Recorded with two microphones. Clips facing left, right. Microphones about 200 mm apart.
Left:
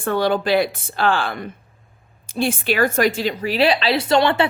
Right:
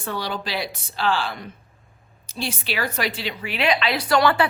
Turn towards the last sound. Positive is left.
turn(degrees=25)  # may be behind; listen again after turning